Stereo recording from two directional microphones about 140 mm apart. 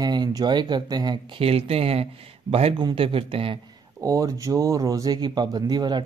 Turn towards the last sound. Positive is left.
turn(degrees=-30)  # may be behind; listen again after turning